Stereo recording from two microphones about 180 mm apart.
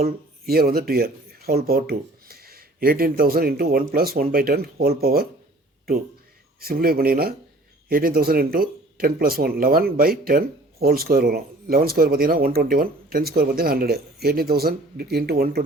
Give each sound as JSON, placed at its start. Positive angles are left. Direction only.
{"t": 0.0, "sound": "speech", "side_deg": -55}
{"t": 6.6, "sound": "speech", "side_deg": -55}